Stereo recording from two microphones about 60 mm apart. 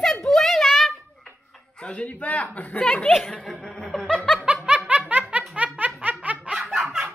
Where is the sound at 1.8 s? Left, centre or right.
Left.